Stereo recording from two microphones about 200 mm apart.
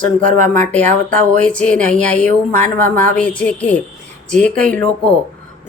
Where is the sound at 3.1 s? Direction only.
5° left (ahead or behind).